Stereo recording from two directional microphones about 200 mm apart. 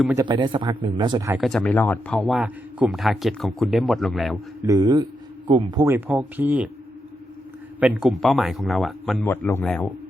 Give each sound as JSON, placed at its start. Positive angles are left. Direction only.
{"t": 0.2, "sound": "speech", "side_deg": -25}
{"t": 1.3, "sound": "a man's voice", "side_deg": 0}
{"t": 4.6, "sound": "speech", "side_deg": -15}
{"t": 7.8, "sound": "a man's voice", "side_deg": -5}